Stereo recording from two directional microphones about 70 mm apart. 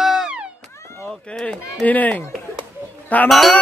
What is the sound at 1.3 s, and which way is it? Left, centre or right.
Speech, centre.